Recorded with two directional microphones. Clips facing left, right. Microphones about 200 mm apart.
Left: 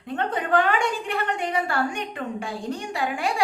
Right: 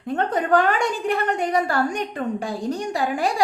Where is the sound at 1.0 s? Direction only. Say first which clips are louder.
Right 5 dB; 40° right (ahead or behind).